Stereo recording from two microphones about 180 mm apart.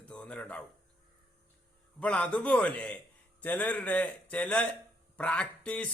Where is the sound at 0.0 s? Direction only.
5° left (ahead or behind).